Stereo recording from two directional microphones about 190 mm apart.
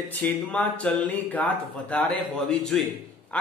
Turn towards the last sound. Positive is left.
turn(degrees=5)  # may be behind; listen again after turning